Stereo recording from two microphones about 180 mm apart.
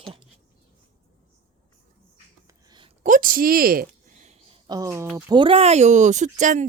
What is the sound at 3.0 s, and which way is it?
Speech, 50° right (ahead or behind).